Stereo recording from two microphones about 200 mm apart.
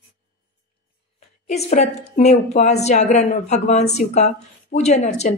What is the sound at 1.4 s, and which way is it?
A woman's voice, 35° left (ahead or behind).